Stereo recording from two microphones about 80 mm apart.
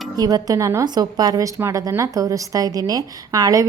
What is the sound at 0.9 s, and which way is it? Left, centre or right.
A woman's voice, right.